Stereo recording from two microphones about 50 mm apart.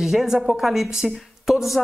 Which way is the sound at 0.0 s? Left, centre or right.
Centre.